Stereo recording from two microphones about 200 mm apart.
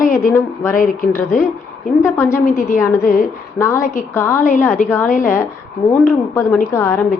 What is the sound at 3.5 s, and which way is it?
A woman's voice, 15° left (ahead or behind).